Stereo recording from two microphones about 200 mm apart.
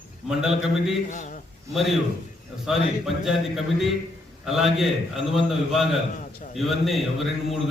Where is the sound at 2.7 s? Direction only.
Centre (ahead or behind).